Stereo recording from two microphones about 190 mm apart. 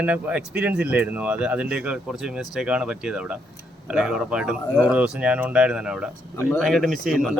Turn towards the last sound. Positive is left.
turn(degrees=0)  # may be behind; listen again after turning